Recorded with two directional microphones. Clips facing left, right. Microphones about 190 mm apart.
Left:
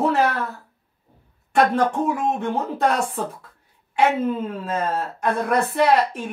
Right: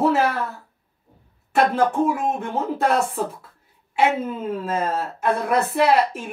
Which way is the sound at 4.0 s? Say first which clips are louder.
Left 1 dB; 5° right (ahead or behind).